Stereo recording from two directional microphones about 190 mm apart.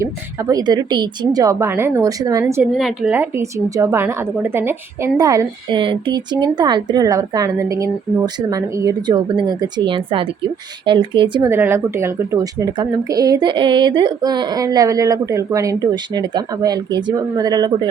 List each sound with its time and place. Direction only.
0.0 s a woman's voice: 20° right (ahead or behind)
2.7 s a woman's voice: centre (ahead or behind); by 11.4 s 25° right (ahead or behind)
11.4 s a woman's voice: 15° right (ahead or behind)